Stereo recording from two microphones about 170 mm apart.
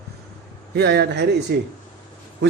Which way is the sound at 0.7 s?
75° right (ahead or behind).